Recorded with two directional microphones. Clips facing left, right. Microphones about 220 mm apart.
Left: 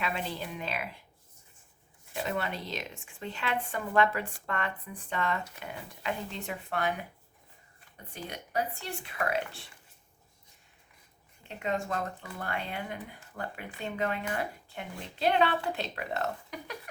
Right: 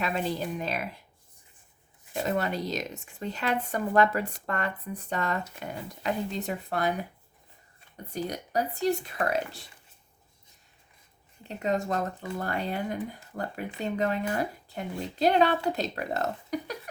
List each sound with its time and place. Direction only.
0.0 s a woman's voice: 40° right (ahead or behind)
2.1 s a woman's voice: 40° right (ahead or behind)
8.1 s a woman's voice: 40° right (ahead or behind)
11.4 s a woman's voice: 40° right (ahead or behind)